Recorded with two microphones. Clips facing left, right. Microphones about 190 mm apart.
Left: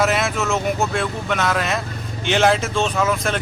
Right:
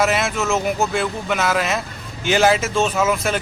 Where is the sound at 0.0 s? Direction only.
Centre (ahead or behind).